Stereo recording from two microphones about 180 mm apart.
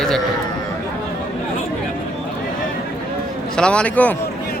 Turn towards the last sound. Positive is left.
turn(degrees=10)  # may be behind; listen again after turning